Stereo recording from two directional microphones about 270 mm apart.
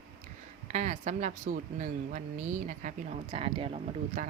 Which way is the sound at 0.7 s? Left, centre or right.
Right.